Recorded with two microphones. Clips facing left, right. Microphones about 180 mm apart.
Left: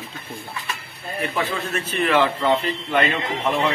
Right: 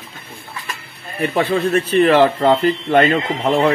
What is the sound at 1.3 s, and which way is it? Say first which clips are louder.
Speech: right 11 dB; 35° right (ahead or behind).